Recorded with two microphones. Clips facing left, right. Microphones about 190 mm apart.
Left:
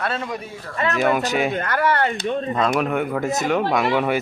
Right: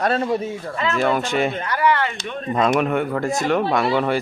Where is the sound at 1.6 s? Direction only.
50° left (ahead or behind); by 2.5 s 35° left (ahead or behind).